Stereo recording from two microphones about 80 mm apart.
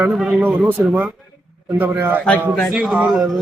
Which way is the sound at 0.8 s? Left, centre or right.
Right.